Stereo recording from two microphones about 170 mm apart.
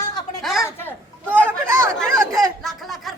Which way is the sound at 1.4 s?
15° right (ahead or behind).